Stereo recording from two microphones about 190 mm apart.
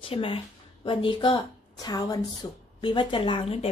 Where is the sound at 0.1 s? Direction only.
30° left (ahead or behind).